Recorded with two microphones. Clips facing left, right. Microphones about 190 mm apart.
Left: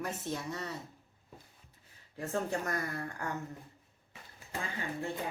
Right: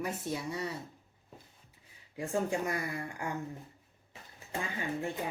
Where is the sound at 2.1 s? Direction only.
10° right (ahead or behind).